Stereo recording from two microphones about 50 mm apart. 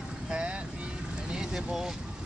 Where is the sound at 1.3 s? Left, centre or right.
Centre.